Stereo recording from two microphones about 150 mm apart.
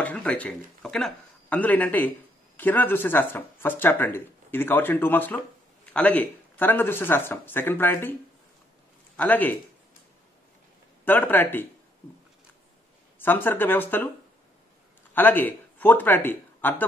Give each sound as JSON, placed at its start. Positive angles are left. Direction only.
{"t": 0.0, "sound": "speech", "side_deg": 10}
{"t": 11.1, "sound": "speech", "side_deg": 15}
{"t": 13.2, "sound": "speech", "side_deg": 15}
{"t": 15.1, "sound": "speech", "side_deg": 10}